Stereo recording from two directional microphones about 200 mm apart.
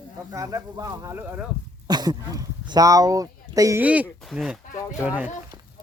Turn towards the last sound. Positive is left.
turn(degrees=-5)  # may be behind; listen again after turning